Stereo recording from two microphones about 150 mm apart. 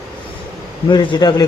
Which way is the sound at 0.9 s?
30° left (ahead or behind).